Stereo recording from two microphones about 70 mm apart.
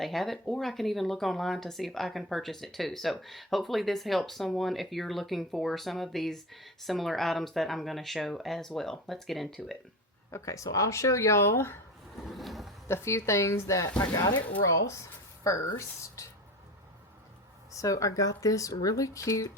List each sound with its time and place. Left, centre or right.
0.0 s speech: centre
10.3 s speech: left
12.1 s speech: centre
12.9 s speech: left
14.0 s speech: left
15.4 s speech: left
17.7 s speech: left